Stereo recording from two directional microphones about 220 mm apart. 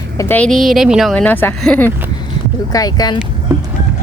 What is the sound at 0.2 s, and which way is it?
Speech, 10° left (ahead or behind).